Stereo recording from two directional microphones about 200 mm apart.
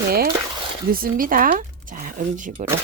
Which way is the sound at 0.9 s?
45° right (ahead or behind).